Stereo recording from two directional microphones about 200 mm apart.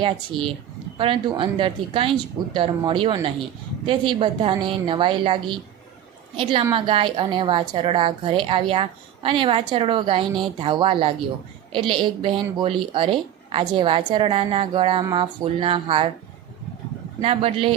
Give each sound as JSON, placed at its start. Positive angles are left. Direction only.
{"t": 0.3, "sound": "a woman's voice", "side_deg": -25}
{"t": 17.2, "sound": "a woman's voice", "side_deg": -30}